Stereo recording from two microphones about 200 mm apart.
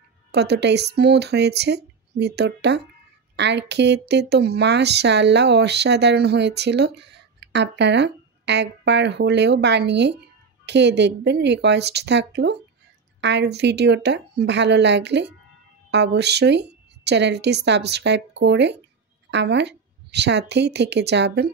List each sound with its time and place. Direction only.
0.3 s speech: 55° right (ahead or behind)